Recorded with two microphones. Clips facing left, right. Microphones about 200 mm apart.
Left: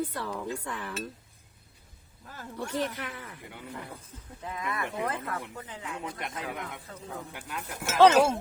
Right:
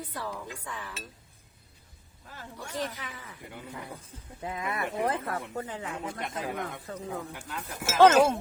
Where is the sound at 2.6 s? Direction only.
60° left (ahead or behind).